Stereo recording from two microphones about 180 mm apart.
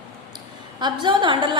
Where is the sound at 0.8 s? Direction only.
25° right (ahead or behind).